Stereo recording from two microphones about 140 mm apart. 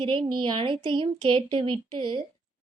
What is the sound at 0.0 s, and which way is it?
A woman's voice, 40° right (ahead or behind).